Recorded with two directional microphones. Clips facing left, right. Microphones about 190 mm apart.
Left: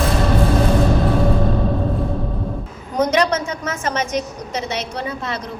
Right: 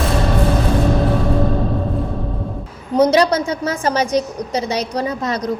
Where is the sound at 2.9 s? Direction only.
30° right (ahead or behind).